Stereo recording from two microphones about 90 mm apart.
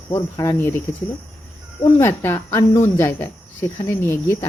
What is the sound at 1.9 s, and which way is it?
Speech, 25° left (ahead or behind).